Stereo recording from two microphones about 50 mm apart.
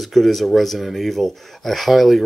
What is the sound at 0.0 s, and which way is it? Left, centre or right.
Speech, centre.